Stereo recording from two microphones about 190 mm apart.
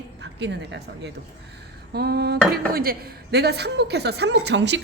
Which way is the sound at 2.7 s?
50° right (ahead or behind).